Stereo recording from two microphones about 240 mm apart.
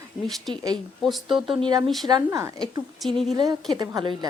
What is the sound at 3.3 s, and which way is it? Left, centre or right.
Speech, centre.